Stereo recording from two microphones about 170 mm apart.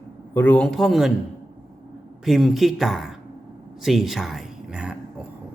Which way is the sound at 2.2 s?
Centre (ahead or behind).